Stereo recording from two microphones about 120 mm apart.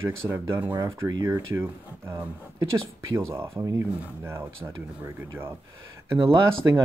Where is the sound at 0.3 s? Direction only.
15° right (ahead or behind).